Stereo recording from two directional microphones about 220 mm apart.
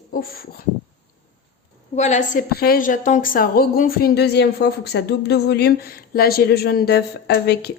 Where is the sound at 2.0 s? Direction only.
35° left (ahead or behind).